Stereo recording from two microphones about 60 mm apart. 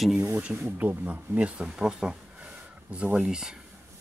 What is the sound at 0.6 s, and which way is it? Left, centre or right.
Speech, right.